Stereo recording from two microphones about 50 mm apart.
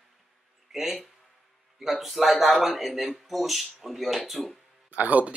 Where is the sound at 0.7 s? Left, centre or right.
Centre.